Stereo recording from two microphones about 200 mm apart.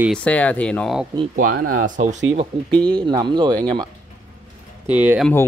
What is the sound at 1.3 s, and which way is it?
Speech, 45° right (ahead or behind).